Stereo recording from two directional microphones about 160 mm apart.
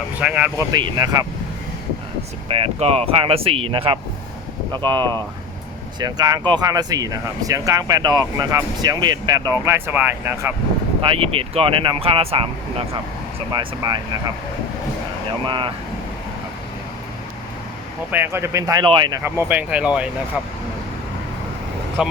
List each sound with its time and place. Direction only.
0.2 s speech: 5° right (ahead or behind)
0.7 s speech: 25° right (ahead or behind)
2.5 s speech: 40° right (ahead or behind); by 10.5 s 15° right (ahead or behind)
11.0 s speech: 35° right (ahead or behind)
13.5 s speech: 25° right (ahead or behind)
15.4 s speech: 30° right (ahead or behind)
18.1 s speech: 15° right (ahead or behind)
19.2 s speech: 15° right (ahead or behind)